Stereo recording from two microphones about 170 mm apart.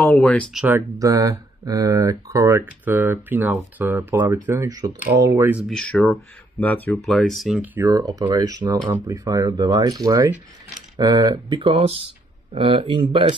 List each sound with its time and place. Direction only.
0.0 s speech: 10° left (ahead or behind); by 5.7 s 10° right (ahead or behind)
5.7 s speech: 5° left (ahead or behind); by 13.3 s 30° right (ahead or behind)